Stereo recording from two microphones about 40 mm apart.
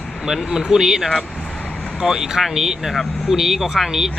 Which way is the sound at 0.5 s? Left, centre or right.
Centre.